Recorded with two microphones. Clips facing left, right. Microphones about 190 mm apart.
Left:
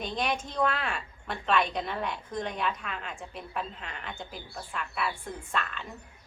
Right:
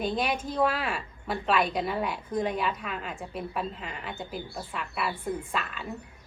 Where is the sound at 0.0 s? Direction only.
5° right (ahead or behind).